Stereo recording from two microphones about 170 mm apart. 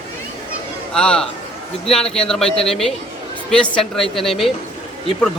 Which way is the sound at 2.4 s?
35° left (ahead or behind).